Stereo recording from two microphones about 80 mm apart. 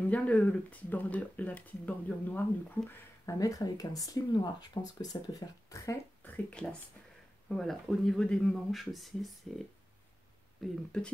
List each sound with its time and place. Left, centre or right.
0.0 s speech: centre
3.3 s speech: left
6.2 s speech: centre
7.4 s speech: centre
10.6 s speech: centre